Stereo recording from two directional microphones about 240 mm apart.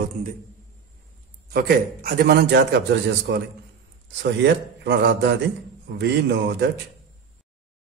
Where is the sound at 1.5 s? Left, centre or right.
Right.